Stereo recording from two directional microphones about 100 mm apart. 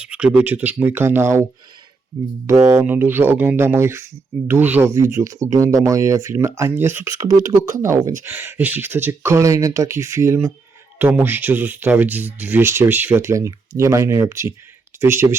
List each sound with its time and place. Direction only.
0.0 s speech: 10° right (ahead or behind)
2.6 s speech: 25° right (ahead or behind)
8.2 s speech: 20° right (ahead or behind)